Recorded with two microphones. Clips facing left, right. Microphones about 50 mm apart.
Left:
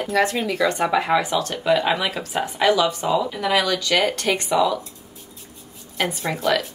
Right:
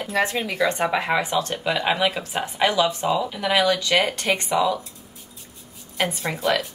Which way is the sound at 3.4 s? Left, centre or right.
Right.